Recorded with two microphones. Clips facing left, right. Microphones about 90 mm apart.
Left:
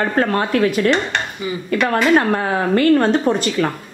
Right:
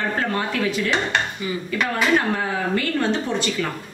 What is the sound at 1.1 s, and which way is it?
Speech, 5° right (ahead or behind).